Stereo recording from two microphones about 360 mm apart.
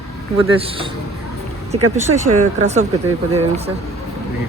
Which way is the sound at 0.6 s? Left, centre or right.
Centre.